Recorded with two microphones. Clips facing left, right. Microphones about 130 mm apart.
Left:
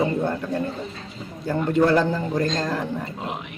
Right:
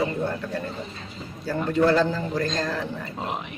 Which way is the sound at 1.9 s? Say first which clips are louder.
Left 2 dB; 15° left (ahead or behind).